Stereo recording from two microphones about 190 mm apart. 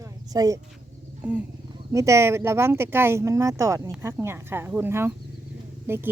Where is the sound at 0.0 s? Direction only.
20° right (ahead or behind).